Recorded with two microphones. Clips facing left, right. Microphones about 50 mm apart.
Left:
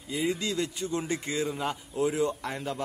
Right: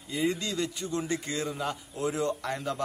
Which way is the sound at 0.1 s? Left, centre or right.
Centre.